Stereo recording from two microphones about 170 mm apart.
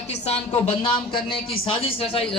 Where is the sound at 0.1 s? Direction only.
35° left (ahead or behind).